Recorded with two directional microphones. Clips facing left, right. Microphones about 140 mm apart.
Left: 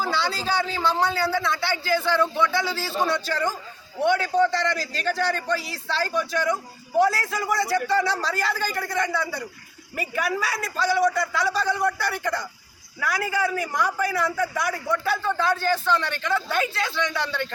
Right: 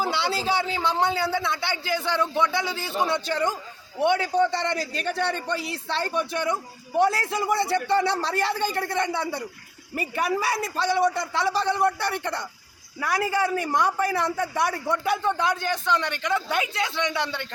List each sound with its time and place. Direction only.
0.0 s a man's voice: 25° right (ahead or behind)